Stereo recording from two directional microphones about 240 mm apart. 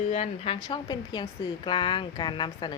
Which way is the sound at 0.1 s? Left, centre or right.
Left.